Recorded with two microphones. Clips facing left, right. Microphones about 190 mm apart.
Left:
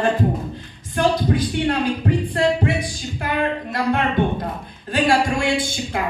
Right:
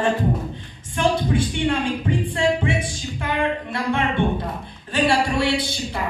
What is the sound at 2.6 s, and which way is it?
Music, 40° left (ahead or behind).